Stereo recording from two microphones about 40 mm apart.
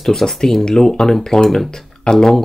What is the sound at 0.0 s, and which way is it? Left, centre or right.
Speech, centre.